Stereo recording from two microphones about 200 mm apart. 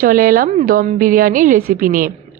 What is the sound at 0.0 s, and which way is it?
A woman's voice, 45° right (ahead or behind).